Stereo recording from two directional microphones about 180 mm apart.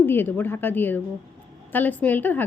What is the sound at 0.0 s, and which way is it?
Speech, 10° left (ahead or behind).